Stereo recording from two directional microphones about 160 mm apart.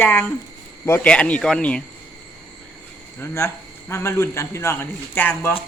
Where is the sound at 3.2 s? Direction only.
15° left (ahead or behind).